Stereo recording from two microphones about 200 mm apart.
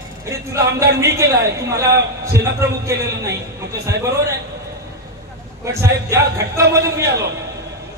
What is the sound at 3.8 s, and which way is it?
Speech, 15° right (ahead or behind).